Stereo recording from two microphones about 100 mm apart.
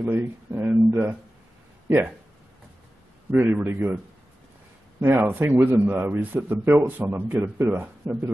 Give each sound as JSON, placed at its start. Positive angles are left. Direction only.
{"t": 0.0, "sound": "speech", "side_deg": -20}
{"t": 3.3, "sound": "a man's voice", "side_deg": -20}
{"t": 5.0, "sound": "a man's voice", "side_deg": -20}